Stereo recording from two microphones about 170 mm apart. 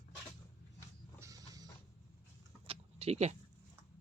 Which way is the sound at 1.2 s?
20° right (ahead or behind).